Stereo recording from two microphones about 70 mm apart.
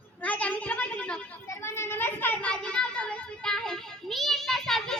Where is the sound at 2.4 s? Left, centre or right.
Centre.